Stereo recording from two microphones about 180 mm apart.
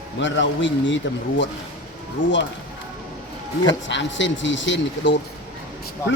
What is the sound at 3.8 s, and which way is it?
A man's voice, 85° left.